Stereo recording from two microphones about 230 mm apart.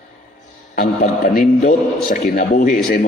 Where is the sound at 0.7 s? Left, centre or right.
Left.